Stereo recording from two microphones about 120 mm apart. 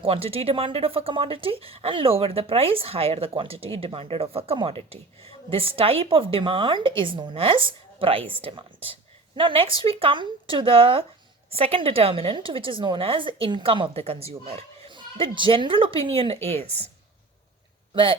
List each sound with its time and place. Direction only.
0.0 s a woman's voice: 55° right (ahead or behind)
14.9 s a woman's voice: 45° right (ahead or behind); by 16.9 s 60° right (ahead or behind)
17.9 s speech: 45° right (ahead or behind)